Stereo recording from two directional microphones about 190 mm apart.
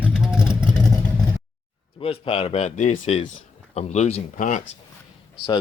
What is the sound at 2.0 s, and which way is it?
A man's voice, 30° left (ahead or behind).